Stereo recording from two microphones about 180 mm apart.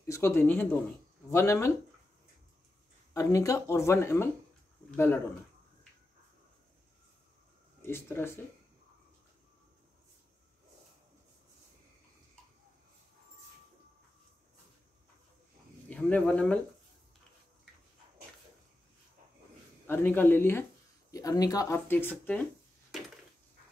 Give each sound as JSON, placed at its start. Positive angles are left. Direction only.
{"t": 0.0, "sound": "speech", "side_deg": 15}
{"t": 3.1, "sound": "speech", "side_deg": 20}
{"t": 7.8, "sound": "speech", "side_deg": 15}
{"t": 15.9, "sound": "speech", "side_deg": 5}
{"t": 19.9, "sound": "speech", "side_deg": 10}